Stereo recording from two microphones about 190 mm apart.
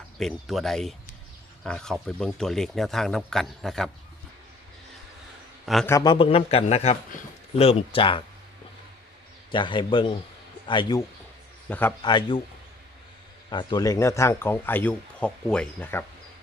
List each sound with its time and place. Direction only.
0.2 s speech: centre (ahead or behind)
5.8 s a man's voice: 20° left (ahead or behind)
9.5 s a man's voice: 25° left (ahead or behind)
11.7 s speech: 10° left (ahead or behind)
12.0 s a man's voice: 25° left (ahead or behind)
13.5 s speech: 25° left (ahead or behind)